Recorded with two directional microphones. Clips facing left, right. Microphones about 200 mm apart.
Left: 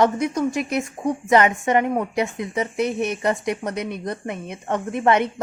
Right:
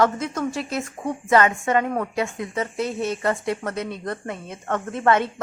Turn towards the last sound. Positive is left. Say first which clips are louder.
# left 1 dB
turn(degrees=20)  # may be behind; listen again after turning